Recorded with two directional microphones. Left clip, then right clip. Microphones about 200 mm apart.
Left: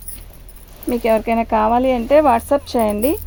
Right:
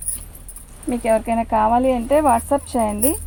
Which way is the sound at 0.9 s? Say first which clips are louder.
Left 2 dB; 55° left (ahead or behind).